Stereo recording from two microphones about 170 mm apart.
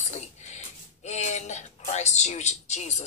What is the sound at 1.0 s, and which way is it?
A woman's voice, 40° left (ahead or behind).